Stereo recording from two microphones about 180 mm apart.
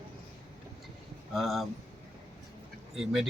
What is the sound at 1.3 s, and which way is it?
Speech, centre (ahead or behind).